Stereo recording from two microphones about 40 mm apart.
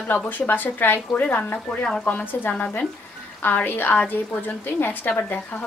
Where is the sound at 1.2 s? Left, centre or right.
Left.